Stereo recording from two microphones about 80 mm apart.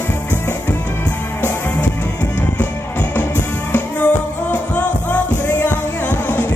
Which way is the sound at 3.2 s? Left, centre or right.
Centre.